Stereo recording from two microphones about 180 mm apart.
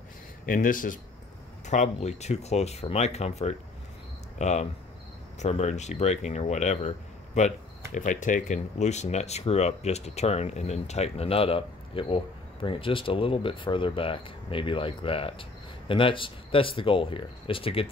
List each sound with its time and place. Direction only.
0.5 s speech: 50° left (ahead or behind); by 17.8 s 30° left (ahead or behind)